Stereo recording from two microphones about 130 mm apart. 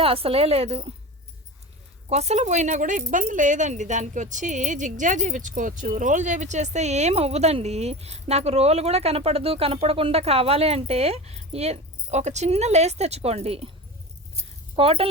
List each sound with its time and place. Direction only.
0.0 s speech: 45° right (ahead or behind)
2.0 s speech: 55° right (ahead or behind)
14.8 s speech: 45° right (ahead or behind)